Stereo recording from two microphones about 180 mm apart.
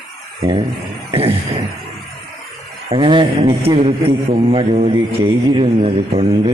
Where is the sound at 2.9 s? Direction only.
25° right (ahead or behind).